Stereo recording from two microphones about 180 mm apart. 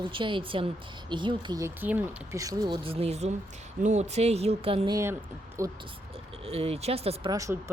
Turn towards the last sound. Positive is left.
turn(degrees=-20)  # may be behind; listen again after turning